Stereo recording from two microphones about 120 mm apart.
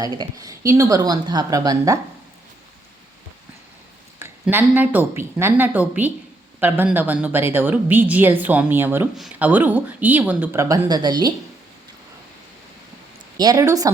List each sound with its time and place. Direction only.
0.0 s speech: 30° right (ahead or behind)
4.2 s a woman's voice: 15° right (ahead or behind)
10.6 s speech: 30° right (ahead or behind)
13.3 s speech: 30° right (ahead or behind)